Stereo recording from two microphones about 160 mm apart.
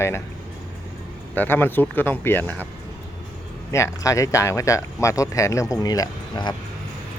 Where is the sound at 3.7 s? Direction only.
20° left (ahead or behind).